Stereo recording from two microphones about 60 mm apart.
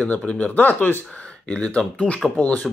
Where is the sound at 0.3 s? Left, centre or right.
Left.